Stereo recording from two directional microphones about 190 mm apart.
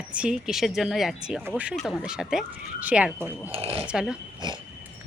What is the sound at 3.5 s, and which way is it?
Speech, 30° right (ahead or behind).